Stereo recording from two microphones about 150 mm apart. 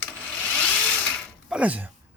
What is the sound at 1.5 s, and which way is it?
Speech, 10° right (ahead or behind).